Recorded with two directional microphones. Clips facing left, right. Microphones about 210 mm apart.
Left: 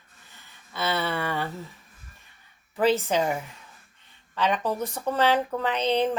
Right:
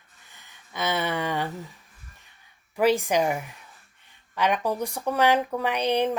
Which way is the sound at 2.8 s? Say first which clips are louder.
Right 1 dB; 15° right (ahead or behind).